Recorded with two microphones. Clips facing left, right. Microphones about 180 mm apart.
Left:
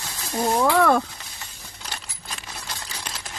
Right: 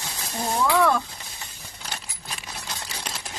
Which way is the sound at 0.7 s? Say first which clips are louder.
Even; 55° left (ahead or behind).